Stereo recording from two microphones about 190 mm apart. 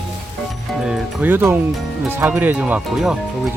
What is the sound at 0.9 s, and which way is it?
Speech, 10° right (ahead or behind).